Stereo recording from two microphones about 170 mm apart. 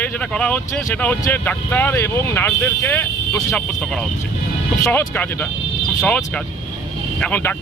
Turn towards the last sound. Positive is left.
turn(degrees=10)  # may be behind; listen again after turning